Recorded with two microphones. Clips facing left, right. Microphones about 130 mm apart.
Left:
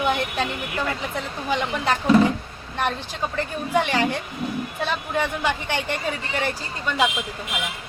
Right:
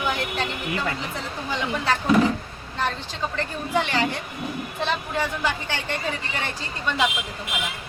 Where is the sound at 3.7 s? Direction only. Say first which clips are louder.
Left 2 dB; 15° left (ahead or behind).